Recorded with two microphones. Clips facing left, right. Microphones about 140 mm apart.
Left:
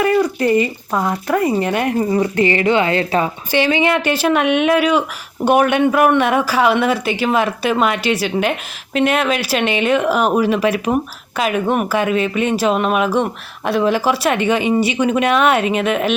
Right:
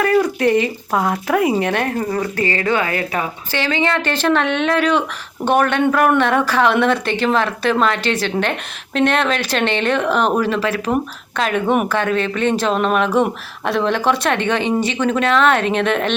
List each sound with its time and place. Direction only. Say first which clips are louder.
0.0 s speech: even; centre (ahead or behind)
1.8 s a woman's voice: left 4 dB; 10° left (ahead or behind); by 3.2 s 30° left (ahead or behind)
3.5 s speech: left 4 dB; 15° left (ahead or behind)